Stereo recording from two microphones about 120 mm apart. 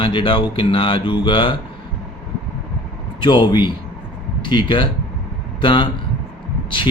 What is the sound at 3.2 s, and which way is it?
Speech, 40° left (ahead or behind).